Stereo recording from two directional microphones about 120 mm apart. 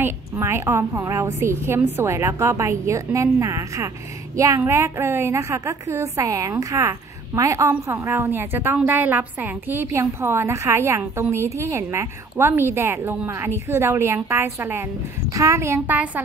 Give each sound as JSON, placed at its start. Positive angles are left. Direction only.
{"t": 0.0, "sound": "a woman's voice", "side_deg": -20}